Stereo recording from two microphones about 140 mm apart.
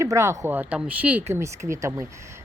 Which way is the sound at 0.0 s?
20° right (ahead or behind).